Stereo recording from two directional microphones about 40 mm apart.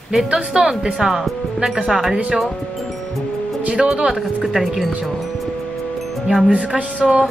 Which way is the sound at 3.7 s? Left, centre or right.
Right.